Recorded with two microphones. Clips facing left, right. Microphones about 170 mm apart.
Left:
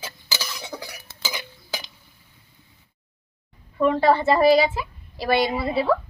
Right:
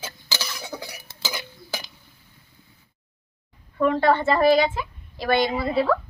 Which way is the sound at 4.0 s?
5° left (ahead or behind).